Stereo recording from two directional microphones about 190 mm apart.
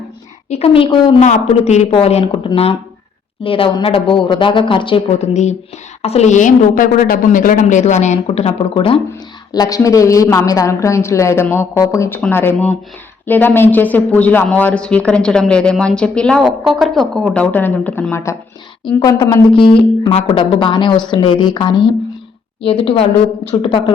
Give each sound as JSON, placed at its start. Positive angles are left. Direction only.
{"t": 0.5, "sound": "speech", "side_deg": 30}
{"t": 1.2, "sound": "a woman's voice", "side_deg": 40}